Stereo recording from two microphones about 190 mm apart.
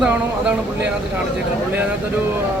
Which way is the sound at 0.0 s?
5° right (ahead or behind).